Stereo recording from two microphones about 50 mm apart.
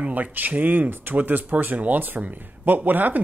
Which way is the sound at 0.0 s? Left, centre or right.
Right.